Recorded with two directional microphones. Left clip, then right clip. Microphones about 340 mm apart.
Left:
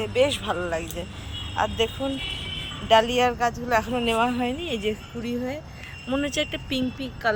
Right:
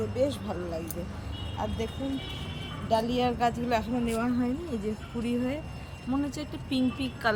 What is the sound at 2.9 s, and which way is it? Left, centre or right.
Speech, centre.